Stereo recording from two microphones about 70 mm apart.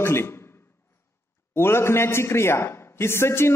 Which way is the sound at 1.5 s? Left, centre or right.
Left.